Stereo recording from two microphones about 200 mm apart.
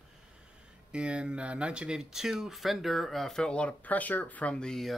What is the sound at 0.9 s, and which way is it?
Speech, 5° right (ahead or behind).